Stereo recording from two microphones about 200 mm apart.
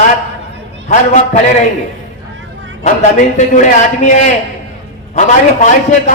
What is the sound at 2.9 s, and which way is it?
A man's voice, 35° left (ahead or behind).